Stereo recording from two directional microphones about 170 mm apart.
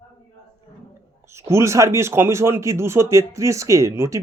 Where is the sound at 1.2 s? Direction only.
15° right (ahead or behind).